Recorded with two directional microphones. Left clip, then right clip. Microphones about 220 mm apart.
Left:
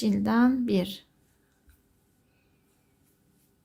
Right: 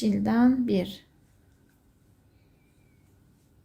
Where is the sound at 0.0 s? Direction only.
15° left (ahead or behind).